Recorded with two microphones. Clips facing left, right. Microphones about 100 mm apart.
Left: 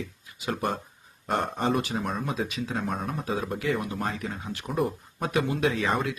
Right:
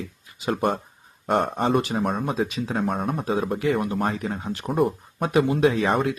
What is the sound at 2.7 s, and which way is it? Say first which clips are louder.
Speech: right 6 dB; 55° right (ahead or behind).